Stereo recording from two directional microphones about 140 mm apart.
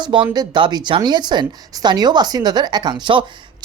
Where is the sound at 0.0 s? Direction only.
35° right (ahead or behind).